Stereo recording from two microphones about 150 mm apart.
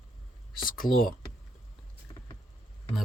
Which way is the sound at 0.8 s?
25° left (ahead or behind).